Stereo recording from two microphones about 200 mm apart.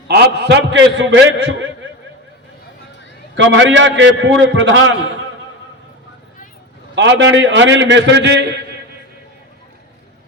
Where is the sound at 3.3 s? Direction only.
65° right (ahead or behind).